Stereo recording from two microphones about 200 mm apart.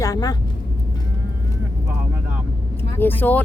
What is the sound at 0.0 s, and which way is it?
Speech, 20° left (ahead or behind).